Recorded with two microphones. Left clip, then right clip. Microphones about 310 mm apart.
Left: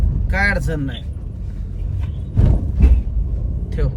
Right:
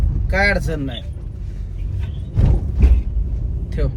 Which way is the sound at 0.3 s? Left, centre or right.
Centre.